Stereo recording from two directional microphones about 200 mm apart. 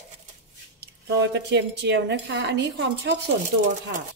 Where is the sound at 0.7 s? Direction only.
60° right (ahead or behind).